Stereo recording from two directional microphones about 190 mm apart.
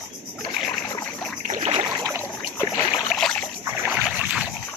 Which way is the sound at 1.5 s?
25° right (ahead or behind).